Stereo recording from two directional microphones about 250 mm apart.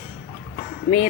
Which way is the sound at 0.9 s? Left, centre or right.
Left.